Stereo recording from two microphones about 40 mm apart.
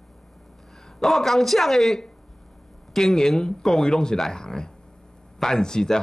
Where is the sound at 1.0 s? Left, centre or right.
Centre.